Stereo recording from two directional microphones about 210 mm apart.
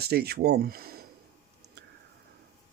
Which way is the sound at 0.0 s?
50° right (ahead or behind).